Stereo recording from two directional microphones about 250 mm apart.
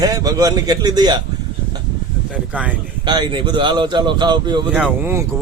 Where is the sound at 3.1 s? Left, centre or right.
Centre.